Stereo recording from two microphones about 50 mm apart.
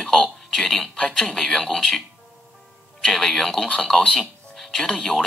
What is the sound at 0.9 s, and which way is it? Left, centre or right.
Speech, centre.